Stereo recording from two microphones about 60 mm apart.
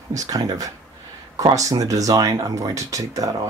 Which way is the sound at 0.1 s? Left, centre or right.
Right.